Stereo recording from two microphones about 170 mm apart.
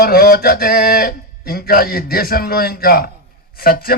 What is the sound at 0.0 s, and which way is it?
Speech, 65° left (ahead or behind).